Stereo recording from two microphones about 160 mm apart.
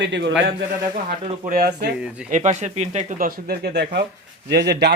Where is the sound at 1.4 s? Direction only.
75° right (ahead or behind).